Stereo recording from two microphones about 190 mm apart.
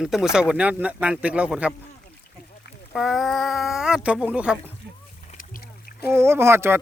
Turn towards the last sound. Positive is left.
turn(degrees=-10)  # may be behind; listen again after turning